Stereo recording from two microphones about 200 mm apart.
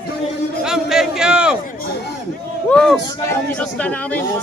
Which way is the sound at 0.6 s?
Centre (ahead or behind).